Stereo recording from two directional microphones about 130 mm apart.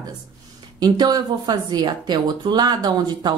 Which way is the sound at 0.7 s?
30° right (ahead or behind).